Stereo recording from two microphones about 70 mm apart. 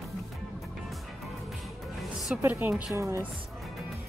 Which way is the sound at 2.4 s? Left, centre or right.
Right.